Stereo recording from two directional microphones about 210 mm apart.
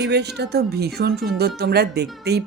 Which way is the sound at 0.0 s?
55° right (ahead or behind).